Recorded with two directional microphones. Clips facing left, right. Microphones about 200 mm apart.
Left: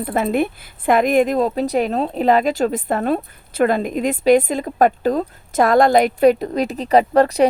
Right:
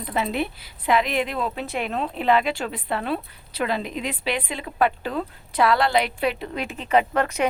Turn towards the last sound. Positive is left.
turn(degrees=35)  # may be behind; listen again after turning